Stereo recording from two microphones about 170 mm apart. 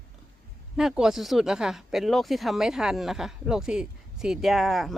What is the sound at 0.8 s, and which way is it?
Speech, 5° right (ahead or behind).